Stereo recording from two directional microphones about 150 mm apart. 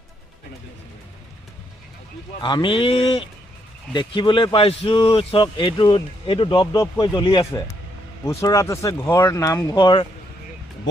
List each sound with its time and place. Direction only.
2.4 s speech: 35° left (ahead or behind)
6.7 s speech: 25° left (ahead or behind)
8.3 s speech: 20° left (ahead or behind)